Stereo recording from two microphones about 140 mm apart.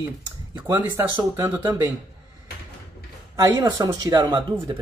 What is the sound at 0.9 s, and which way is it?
Speech, 15° right (ahead or behind).